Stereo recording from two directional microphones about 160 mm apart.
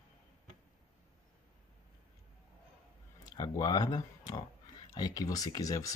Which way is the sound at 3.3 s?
25° left (ahead or behind).